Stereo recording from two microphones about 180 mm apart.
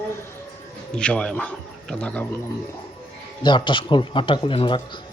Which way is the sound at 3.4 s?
25° left (ahead or behind).